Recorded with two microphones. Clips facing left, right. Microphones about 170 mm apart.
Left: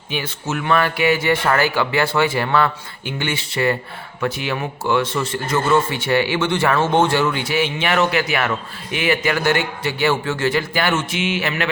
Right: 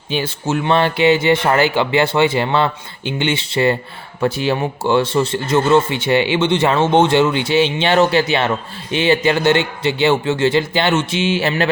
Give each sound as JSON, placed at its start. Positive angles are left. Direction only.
{"t": 0.1, "sound": "speech", "side_deg": -30}